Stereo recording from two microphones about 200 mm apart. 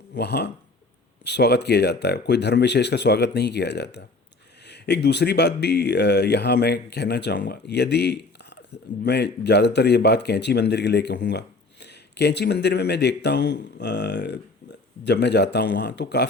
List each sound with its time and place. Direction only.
0.1 s speech: 55° left (ahead or behind)